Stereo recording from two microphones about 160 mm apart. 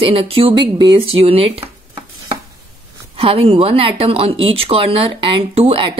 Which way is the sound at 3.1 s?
35° right (ahead or behind).